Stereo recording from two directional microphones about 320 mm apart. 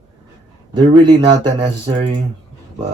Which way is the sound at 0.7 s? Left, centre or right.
Centre.